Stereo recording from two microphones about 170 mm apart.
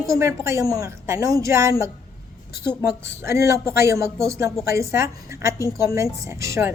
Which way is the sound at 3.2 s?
15° right (ahead or behind).